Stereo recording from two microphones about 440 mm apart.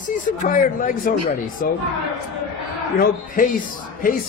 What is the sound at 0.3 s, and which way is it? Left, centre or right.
A man's voice, centre.